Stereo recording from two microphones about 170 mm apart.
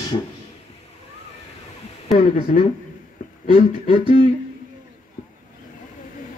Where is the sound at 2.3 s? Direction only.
55° left (ahead or behind).